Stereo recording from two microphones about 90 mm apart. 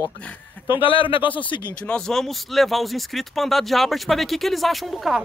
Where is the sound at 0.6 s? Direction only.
75° left (ahead or behind).